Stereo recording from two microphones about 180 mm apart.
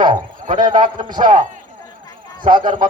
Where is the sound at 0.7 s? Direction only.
25° right (ahead or behind).